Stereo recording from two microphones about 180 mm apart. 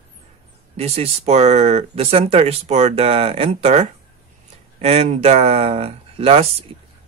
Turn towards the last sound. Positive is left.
turn(degrees=-35)  # may be behind; listen again after turning